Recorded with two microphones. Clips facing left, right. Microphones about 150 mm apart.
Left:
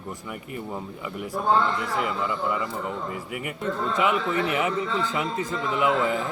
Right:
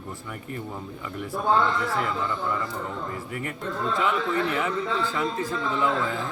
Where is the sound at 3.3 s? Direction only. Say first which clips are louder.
Left 2 dB; 15° left (ahead or behind).